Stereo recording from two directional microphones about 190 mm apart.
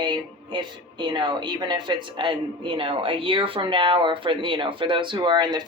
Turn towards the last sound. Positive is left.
turn(degrees=-25)  # may be behind; listen again after turning